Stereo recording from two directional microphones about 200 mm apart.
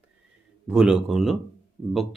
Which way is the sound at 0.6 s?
5° right (ahead or behind).